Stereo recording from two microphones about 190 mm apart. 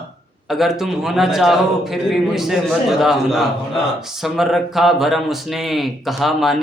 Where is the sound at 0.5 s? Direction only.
Centre (ahead or behind).